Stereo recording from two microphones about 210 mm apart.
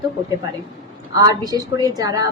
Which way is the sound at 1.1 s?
15° right (ahead or behind).